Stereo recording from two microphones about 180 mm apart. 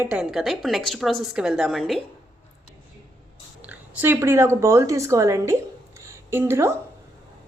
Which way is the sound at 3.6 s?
10° right (ahead or behind).